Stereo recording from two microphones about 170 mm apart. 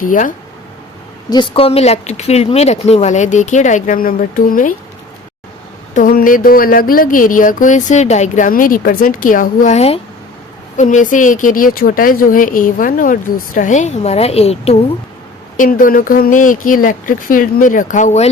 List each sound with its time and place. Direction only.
0.0 s speech: 50° left (ahead or behind)
1.3 s speech: 30° left (ahead or behind); by 4.7 s 55° left (ahead or behind)
5.9 s speech: 55° left (ahead or behind); by 14.8 s 40° left (ahead or behind)
15.5 s speech: 50° left (ahead or behind)